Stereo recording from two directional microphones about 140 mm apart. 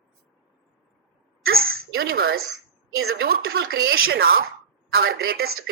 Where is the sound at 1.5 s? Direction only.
90° right.